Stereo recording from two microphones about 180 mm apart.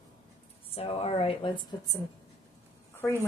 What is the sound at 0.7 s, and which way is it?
Speech, 30° left (ahead or behind).